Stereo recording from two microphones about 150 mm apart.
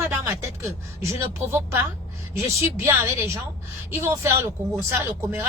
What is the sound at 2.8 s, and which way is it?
A woman's voice, 20° right (ahead or behind).